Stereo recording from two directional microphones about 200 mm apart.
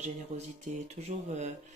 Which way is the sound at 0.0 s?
35° right (ahead or behind).